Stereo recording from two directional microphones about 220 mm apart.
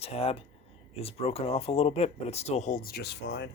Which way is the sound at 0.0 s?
25° left (ahead or behind).